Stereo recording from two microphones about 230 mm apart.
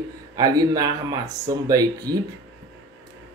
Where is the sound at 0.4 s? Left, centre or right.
Centre.